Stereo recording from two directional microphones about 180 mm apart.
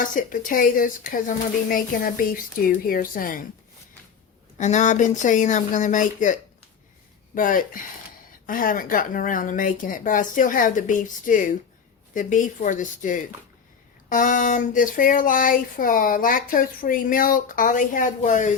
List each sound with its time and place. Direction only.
0.0 s speech: 45° left (ahead or behind)
4.5 s speech: 40° left (ahead or behind)
7.3 s speech: 50° left (ahead or behind)